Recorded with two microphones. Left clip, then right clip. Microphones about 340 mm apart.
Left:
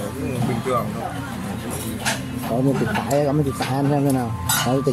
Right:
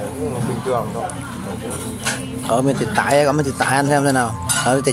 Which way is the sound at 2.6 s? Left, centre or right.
Right.